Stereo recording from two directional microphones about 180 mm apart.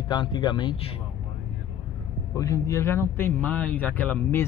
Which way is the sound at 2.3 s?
15° left (ahead or behind).